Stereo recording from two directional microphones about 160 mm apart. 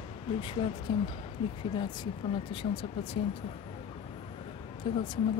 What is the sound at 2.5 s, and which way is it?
Speech, 35° left (ahead or behind).